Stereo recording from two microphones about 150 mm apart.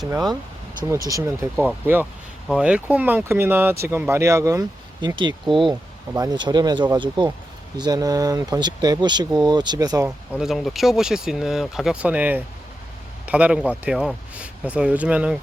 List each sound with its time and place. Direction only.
0.1 s speech: 25° right (ahead or behind)
1.6 s speech: 15° right (ahead or behind)
4.9 s speech: 30° right (ahead or behind)
10.3 s speech: centre (ahead or behind)